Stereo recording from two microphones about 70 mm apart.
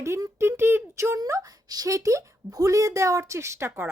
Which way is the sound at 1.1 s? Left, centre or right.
Right.